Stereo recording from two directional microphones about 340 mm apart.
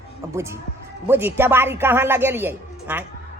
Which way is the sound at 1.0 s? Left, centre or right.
Centre.